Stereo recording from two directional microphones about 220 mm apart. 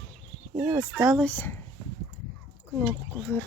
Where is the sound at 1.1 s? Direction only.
5° left (ahead or behind).